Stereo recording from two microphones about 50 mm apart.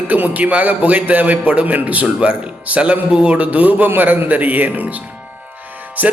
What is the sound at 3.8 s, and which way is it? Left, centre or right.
A man's voice, right.